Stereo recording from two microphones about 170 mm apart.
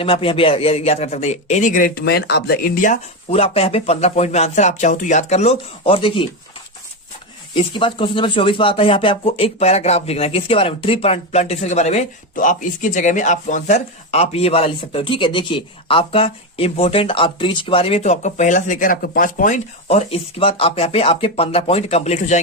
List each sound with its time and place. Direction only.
0.0 s speech: 30° left (ahead or behind)
7.5 s speech: 30° left (ahead or behind)